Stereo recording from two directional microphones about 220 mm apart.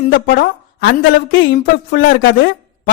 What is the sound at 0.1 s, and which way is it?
A woman's voice, 45° left (ahead or behind).